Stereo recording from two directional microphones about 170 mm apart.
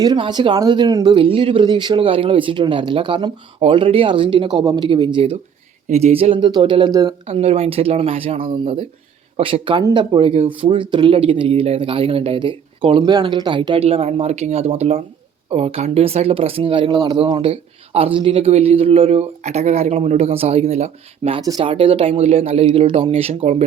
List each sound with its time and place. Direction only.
0.0 s speech: 25° right (ahead or behind)
7.3 s speech: 35° right (ahead or behind)